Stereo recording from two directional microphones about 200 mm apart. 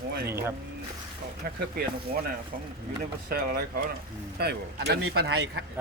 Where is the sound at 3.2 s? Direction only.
50° right (ahead or behind).